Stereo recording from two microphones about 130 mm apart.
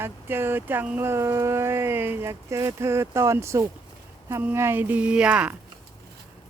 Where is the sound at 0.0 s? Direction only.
15° right (ahead or behind).